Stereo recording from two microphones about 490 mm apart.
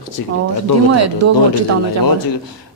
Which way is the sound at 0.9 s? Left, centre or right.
Right.